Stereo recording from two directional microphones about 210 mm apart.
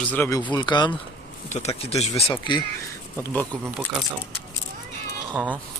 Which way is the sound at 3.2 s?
5° left (ahead or behind).